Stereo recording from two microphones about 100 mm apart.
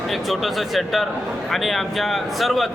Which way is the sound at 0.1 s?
Centre (ahead or behind).